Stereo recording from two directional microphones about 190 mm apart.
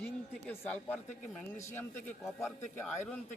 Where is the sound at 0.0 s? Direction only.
10° left (ahead or behind).